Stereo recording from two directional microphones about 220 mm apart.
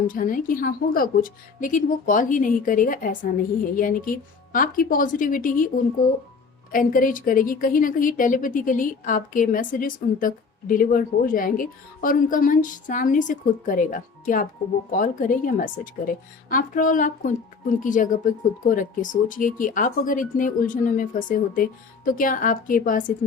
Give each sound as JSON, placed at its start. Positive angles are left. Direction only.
{"t": 0.1, "sound": "a woman's voice", "side_deg": 35}